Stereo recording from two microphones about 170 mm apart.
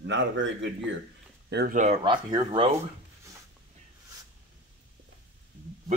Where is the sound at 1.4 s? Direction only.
75° right (ahead or behind).